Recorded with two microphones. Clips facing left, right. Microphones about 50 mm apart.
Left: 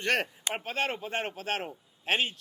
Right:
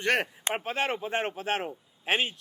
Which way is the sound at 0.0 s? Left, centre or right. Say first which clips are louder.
Right 2 dB; centre.